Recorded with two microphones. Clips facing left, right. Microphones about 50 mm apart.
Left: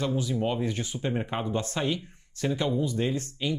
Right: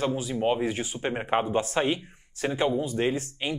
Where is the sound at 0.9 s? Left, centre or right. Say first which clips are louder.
Right 4 dB; right.